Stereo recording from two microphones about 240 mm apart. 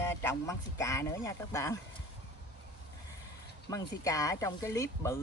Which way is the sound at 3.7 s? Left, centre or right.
Centre.